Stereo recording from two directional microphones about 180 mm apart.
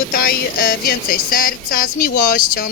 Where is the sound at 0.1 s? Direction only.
55° left (ahead or behind).